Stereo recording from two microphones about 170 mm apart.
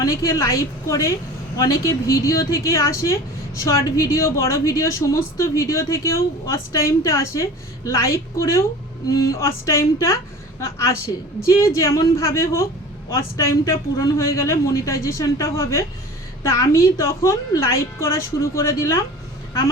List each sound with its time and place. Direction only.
0.0 s a woman's voice: 20° left (ahead or behind)